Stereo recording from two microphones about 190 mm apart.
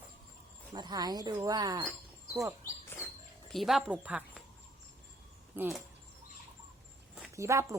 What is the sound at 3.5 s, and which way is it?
Speech, centre (ahead or behind).